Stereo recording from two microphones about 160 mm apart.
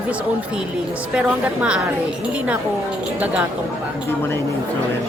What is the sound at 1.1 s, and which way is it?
Speech, 5° right (ahead or behind).